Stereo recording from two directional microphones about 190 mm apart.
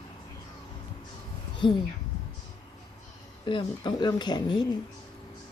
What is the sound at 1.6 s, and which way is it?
Speech, 25° left (ahead or behind).